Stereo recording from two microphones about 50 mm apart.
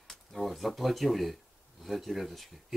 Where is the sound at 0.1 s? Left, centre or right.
Centre.